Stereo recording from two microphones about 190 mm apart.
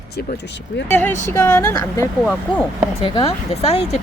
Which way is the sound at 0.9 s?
10° left (ahead or behind).